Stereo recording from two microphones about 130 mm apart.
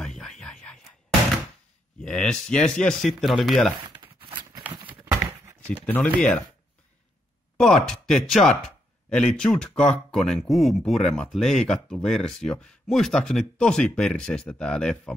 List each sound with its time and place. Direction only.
0.0 s a sound: 5° left (ahead or behind)
2.0 s speech: 5° left (ahead or behind)
4.7 s horse: 35° right (ahead or behind)
5.7 s speech: 15° left (ahead or behind)
7.5 s speech: 5° left (ahead or behind)